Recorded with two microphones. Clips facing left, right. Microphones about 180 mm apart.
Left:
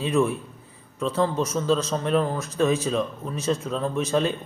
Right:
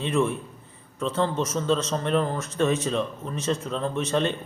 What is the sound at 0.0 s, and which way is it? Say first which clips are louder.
A man's voice: left 2 dB; centre (ahead or behind).